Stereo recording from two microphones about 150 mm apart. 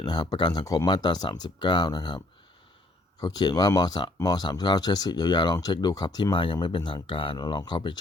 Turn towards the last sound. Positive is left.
turn(degrees=30)  # may be behind; listen again after turning